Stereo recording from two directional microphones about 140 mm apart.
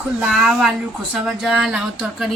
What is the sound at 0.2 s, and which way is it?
Speech, 5° right (ahead or behind).